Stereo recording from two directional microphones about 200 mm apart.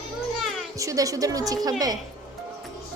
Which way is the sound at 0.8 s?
15° right (ahead or behind).